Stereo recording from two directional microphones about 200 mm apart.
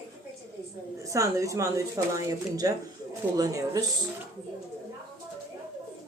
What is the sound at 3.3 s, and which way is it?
Speech, 20° right (ahead or behind).